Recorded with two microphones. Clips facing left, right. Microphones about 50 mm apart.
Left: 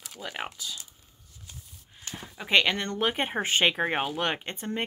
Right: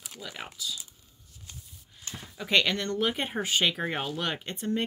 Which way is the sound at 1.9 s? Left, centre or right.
Left.